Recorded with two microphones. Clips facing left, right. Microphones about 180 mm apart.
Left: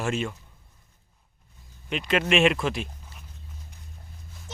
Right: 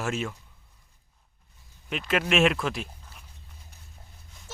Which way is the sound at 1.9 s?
Centre (ahead or behind).